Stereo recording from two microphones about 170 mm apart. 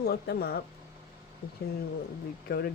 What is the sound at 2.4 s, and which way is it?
Speech, 65° left (ahead or behind).